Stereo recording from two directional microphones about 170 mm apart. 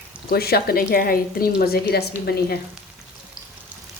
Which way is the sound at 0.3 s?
65° left (ahead or behind).